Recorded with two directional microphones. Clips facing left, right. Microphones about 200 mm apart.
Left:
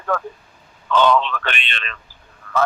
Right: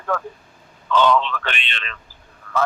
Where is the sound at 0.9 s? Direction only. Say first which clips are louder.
Left 1 dB; 55° left (ahead or behind).